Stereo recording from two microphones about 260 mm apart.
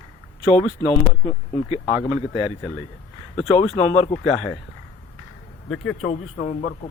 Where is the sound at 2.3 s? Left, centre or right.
Left.